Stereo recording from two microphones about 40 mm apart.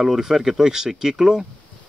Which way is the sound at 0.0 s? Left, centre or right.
Centre.